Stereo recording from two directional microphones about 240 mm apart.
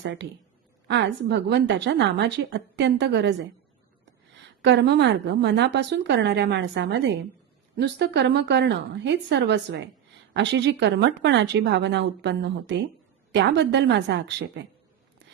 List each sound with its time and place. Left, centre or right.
0.0 s a woman's voice: right
4.6 s a woman's voice: right